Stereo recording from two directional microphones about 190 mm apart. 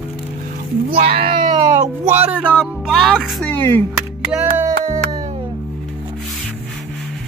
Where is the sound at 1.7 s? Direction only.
10° right (ahead or behind); by 3.8 s 10° left (ahead or behind).